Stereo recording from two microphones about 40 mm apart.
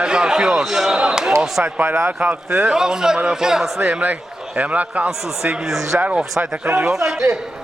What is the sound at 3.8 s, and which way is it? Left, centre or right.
A man's voice, right.